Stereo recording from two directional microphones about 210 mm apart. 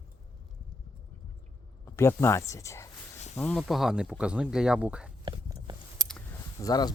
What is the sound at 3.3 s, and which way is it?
Speech, centre (ahead or behind).